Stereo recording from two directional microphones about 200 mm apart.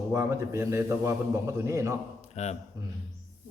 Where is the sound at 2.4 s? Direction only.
35° left (ahead or behind).